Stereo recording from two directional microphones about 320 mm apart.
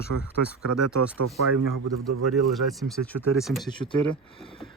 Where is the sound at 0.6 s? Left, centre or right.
Right.